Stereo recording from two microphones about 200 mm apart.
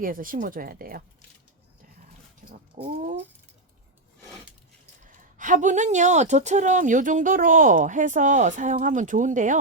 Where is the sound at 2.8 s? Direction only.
30° right (ahead or behind).